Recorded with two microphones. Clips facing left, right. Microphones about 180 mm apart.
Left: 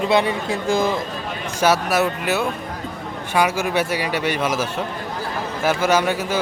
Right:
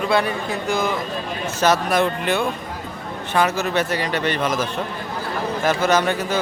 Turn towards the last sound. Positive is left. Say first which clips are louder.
# even
turn(degrees=10)  # may be behind; listen again after turning